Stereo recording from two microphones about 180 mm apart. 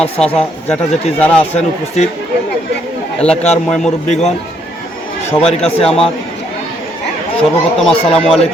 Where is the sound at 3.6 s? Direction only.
5° left (ahead or behind).